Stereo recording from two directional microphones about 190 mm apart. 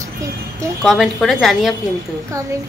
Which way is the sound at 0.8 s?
Centre (ahead or behind).